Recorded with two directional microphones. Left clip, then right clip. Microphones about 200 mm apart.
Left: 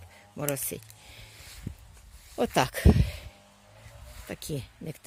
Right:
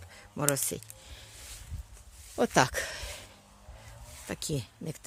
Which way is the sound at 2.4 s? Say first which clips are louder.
Right 1 dB; centre (ahead or behind).